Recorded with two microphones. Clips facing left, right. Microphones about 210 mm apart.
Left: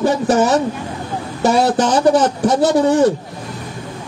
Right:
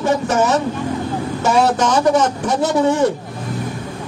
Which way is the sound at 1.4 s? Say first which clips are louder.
Left 2 dB; 35° left (ahead or behind).